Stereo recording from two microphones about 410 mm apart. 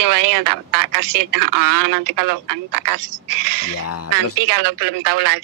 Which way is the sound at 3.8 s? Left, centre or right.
Left.